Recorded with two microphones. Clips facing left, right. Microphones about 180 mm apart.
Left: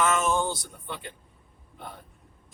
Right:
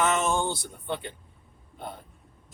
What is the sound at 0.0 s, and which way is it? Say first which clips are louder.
Speech: even; 25° right (ahead or behind).